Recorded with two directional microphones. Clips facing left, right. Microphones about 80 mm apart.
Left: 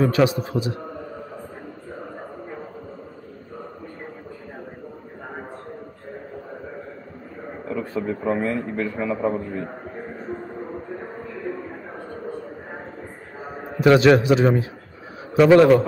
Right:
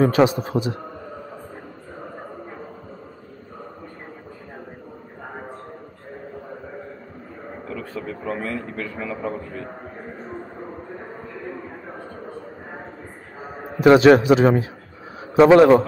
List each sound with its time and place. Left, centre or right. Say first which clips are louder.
0.0 s a man's voice: right 2 dB; right
7.6 s a man's voice: left 6 dB; centre
13.7 s a man's voice: right 3 dB; right
15.5 s a man's voice: right 1 dB; centre